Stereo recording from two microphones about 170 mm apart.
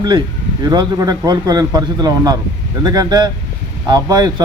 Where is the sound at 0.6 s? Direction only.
25° right (ahead or behind).